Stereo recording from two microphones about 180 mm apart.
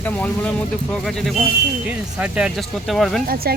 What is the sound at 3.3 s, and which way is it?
Speech, 60° right (ahead or behind).